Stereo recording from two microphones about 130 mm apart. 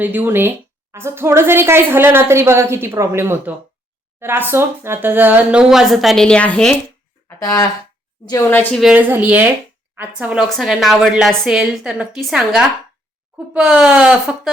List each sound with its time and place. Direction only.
0.0 s a woman's voice: 15° right (ahead or behind); by 6.7 s 10° left (ahead or behind)
8.3 s a woman's voice: 20° left (ahead or behind)
8.9 s a woman's voice: 15° right (ahead or behind)